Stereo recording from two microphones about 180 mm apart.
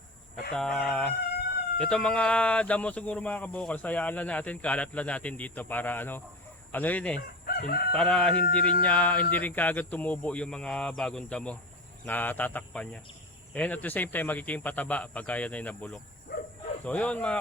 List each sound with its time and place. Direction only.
0.5 s fowl: 5° left (ahead or behind)
1.8 s speech: 5° left (ahead or behind)
7.6 s crowing: 55° left (ahead or behind)
7.9 s fowl: 5° left (ahead or behind)
8.6 s speech: 10° left (ahead or behind)
16.3 s livestock: 60° left (ahead or behind)
16.8 s speech: 5° left (ahead or behind)